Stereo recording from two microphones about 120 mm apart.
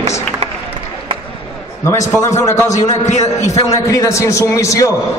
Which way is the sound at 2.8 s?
70° left (ahead or behind).